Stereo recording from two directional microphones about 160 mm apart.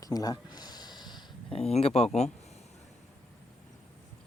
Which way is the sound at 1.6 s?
40° left (ahead or behind).